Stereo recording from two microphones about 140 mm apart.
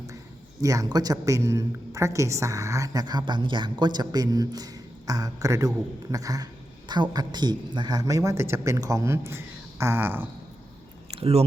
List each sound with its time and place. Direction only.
0.6 s a woman's voice: 25° right (ahead or behind)
11.1 s speech: 45° right (ahead or behind)